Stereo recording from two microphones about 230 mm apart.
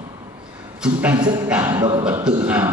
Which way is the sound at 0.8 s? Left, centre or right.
Centre.